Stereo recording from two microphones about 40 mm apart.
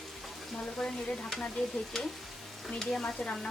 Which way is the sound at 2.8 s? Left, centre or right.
Centre.